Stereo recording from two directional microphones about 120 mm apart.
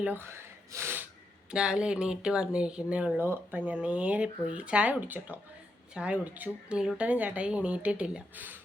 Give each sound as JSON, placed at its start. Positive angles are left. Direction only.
{"t": 0.0, "sound": "speech", "side_deg": -15}
{"t": 1.5, "sound": "speech", "side_deg": -5}